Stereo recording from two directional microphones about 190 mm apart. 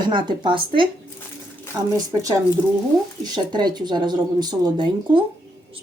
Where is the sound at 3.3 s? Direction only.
20° right (ahead or behind).